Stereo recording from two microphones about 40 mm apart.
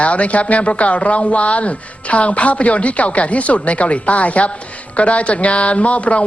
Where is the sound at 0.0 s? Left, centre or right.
Left.